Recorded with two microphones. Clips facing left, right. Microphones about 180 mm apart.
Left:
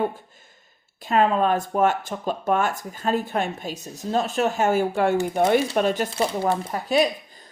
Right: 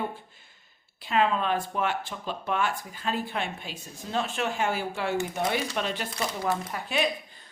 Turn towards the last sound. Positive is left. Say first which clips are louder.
# left 8 dB
turn(degrees=40)  # may be behind; listen again after turning